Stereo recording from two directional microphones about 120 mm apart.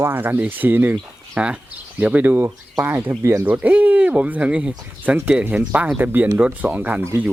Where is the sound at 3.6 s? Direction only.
10° right (ahead or behind).